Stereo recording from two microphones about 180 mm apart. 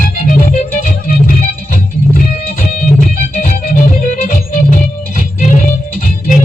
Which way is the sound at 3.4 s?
50° left (ahead or behind).